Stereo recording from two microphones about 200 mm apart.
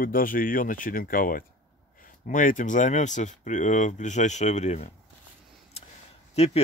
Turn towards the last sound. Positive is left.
turn(degrees=30)  # may be behind; listen again after turning